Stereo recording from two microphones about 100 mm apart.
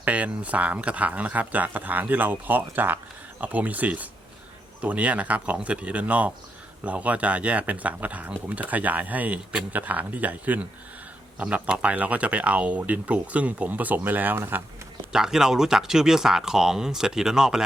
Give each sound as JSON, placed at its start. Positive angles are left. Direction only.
{"t": 0.0, "sound": "speech", "side_deg": -15}
{"t": 15.1, "sound": "speech", "side_deg": -5}